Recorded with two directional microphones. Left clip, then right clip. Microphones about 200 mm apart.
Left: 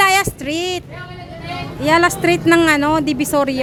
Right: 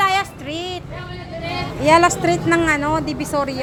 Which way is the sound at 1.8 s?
15° left (ahead or behind).